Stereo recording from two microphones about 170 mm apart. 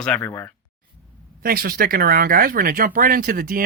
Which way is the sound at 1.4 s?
60° right (ahead or behind).